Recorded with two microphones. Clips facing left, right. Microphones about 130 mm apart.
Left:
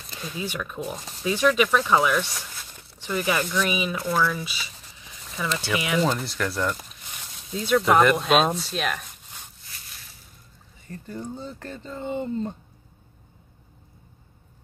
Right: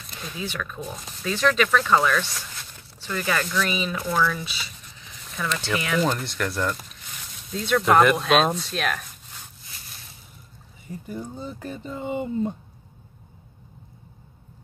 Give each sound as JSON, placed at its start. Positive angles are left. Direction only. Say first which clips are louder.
{"t": 0.4, "sound": "speech", "louder": "left 1 dB", "side_deg": 15}
{"t": 10.9, "sound": "speech", "louder": "even", "side_deg": -10}